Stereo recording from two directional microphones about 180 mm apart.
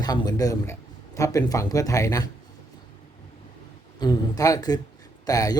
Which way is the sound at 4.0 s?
20° left (ahead or behind).